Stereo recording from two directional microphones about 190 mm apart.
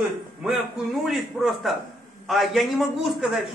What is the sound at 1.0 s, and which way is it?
A man's voice, centre (ahead or behind).